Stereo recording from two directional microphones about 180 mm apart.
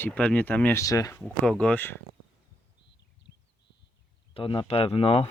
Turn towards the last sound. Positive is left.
turn(degrees=30)  # may be behind; listen again after turning